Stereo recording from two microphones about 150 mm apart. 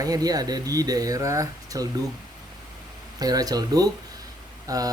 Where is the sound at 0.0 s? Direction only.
25° right (ahead or behind).